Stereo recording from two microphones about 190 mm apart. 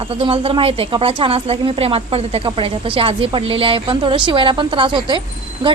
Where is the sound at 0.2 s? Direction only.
30° right (ahead or behind).